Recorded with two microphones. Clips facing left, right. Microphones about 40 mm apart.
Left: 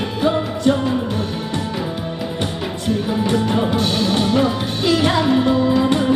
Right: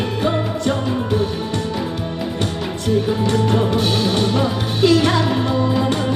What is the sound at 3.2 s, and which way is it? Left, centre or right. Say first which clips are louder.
Music: right 1 dB; centre.